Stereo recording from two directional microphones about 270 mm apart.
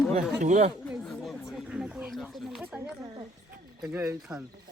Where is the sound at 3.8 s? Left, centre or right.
Centre.